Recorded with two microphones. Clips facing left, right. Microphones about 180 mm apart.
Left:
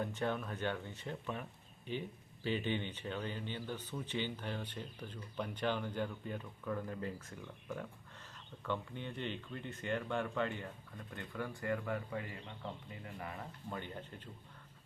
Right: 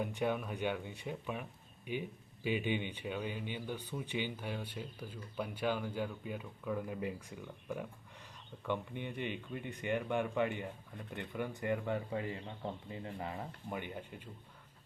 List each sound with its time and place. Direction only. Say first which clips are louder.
0.0 s speech: right 2 dB; 10° right (ahead or behind)